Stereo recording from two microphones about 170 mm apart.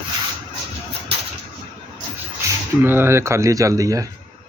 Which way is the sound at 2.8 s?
15° right (ahead or behind).